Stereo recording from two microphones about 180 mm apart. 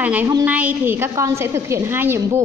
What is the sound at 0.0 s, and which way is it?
A woman's voice, 10° right (ahead or behind).